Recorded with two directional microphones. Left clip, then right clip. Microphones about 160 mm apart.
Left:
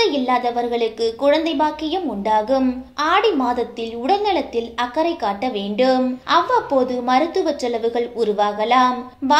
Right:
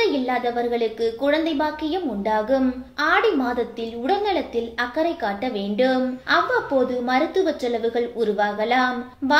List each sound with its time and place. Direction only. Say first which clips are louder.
0.0 s a woman's voice: left 3 dB; 25° left (ahead or behind)